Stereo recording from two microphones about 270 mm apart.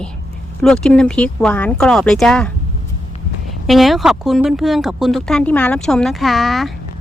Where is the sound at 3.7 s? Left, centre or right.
Centre.